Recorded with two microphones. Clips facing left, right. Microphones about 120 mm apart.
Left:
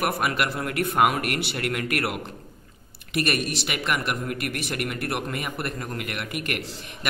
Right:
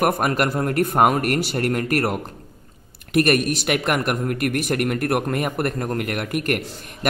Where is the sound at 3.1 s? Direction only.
50° right (ahead or behind).